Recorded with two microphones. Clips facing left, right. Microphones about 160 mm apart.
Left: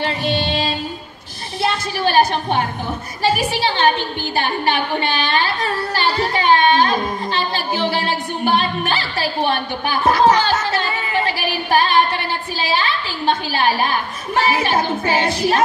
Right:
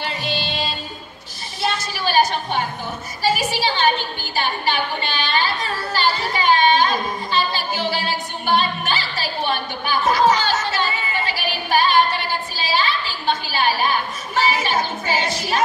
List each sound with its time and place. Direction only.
0.0 s music: 55° left (ahead or behind)
1.6 s a woman's voice: 55° left (ahead or behind)
5.9 s a sound: 55° left (ahead or behind)
8.5 s a woman's voice: 55° left (ahead or behind)